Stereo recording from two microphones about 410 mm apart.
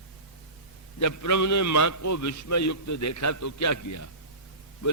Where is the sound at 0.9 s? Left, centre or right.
Left.